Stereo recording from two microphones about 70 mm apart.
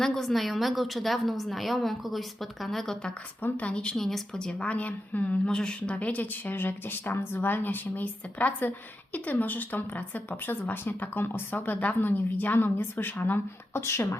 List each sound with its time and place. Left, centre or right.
0.0 s a woman's voice: centre
3.4 s speech: centre
3.9 s a woman's voice: centre; by 14.2 s left